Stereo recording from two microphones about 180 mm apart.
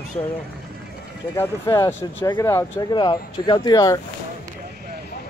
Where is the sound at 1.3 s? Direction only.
15° left (ahead or behind).